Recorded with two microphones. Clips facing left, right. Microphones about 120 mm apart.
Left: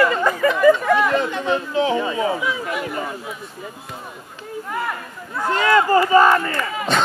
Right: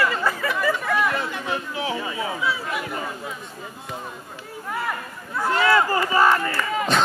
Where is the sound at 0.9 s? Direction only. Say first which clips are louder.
Left 6 dB; 20° left (ahead or behind).